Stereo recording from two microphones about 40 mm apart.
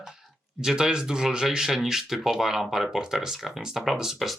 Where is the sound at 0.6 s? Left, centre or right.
Centre.